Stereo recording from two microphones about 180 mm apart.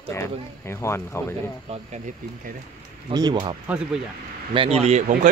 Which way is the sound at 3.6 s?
5° right (ahead or behind).